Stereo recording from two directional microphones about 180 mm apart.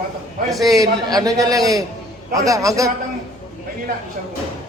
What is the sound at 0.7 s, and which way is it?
A man's voice, 20° right (ahead or behind).